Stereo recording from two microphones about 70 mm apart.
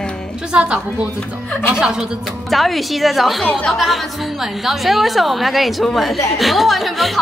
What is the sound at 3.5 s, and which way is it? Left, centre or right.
Speech, centre.